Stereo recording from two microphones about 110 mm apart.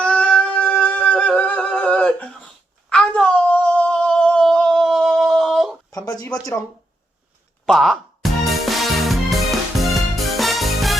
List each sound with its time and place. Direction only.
0.0 s a sound: 10° left (ahead or behind)
2.9 s humming: 5° left (ahead or behind)
5.9 s speech: 35° left (ahead or behind)
7.6 s music: 5° left (ahead or behind)